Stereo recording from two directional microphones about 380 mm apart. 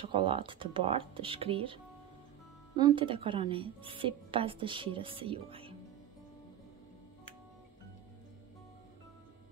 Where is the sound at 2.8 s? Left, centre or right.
Centre.